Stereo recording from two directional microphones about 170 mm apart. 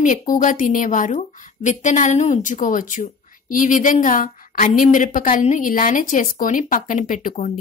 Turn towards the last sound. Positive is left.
turn(degrees=50)  # may be behind; listen again after turning